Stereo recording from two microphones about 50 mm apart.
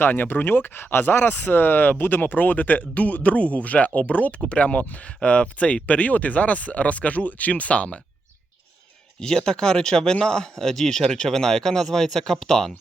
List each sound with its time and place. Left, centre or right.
0.0 s speech: left
9.2 s speech: centre